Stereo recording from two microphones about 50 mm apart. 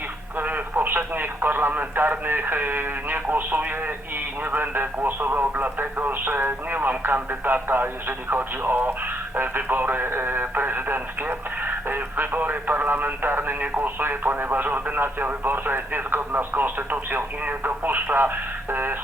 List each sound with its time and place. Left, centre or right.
0.3 s speech: right